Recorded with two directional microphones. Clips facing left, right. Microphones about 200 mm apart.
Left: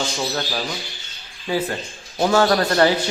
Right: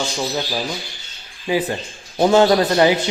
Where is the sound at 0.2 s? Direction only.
10° right (ahead or behind).